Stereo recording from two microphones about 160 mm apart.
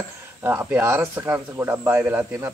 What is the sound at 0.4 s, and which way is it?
Speech, 15° right (ahead or behind).